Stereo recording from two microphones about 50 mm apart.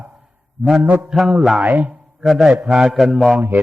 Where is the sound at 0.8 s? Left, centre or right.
Right.